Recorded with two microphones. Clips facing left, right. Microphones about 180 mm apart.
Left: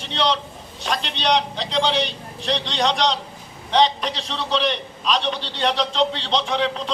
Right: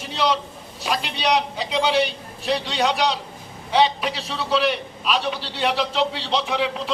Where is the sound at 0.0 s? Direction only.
5° right (ahead or behind).